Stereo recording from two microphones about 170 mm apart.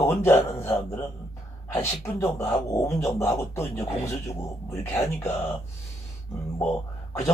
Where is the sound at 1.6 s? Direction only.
15° left (ahead or behind).